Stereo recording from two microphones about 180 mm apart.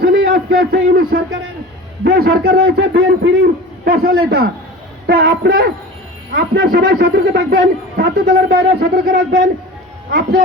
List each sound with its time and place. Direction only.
0.0 s a man's voice: 60° right (ahead or behind)